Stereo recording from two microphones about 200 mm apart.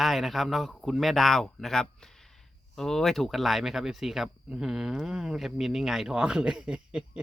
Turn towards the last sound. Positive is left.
turn(degrees=-5)  # may be behind; listen again after turning